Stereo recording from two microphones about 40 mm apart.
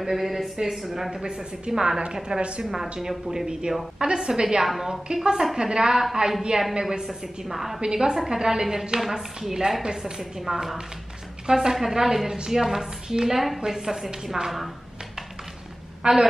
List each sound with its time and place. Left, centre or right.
0.0 s a woman's voice: centre
1.2 s a woman's voice: centre
2.6 s a woman's voice: centre
8.1 s a woman's voice: centre
10.4 s a woman's voice: centre
11.4 s a woman's voice: centre
16.0 s speech: centre